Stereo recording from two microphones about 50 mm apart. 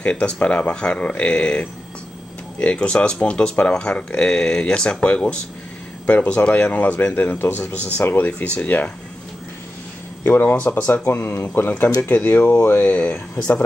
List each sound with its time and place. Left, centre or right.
0.0 s speech: left
10.2 s speech: left
11.1 s speech: left
11.3 s speech: left
11.7 s speech: left